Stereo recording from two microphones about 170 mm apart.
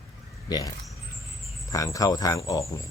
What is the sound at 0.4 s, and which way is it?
Speech, 20° left (ahead or behind).